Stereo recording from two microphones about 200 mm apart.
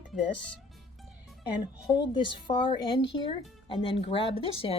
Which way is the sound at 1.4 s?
20° left (ahead or behind).